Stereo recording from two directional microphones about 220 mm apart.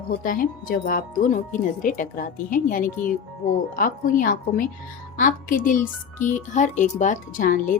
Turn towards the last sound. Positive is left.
turn(degrees=35)  # may be behind; listen again after turning